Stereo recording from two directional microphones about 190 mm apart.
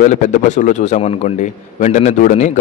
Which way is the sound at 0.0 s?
40° left (ahead or behind).